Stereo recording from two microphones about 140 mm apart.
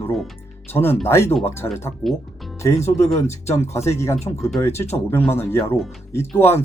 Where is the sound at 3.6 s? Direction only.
20° left (ahead or behind).